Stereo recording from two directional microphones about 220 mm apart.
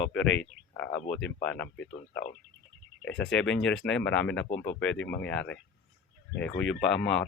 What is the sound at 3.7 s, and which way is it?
Speech, 5° left (ahead or behind).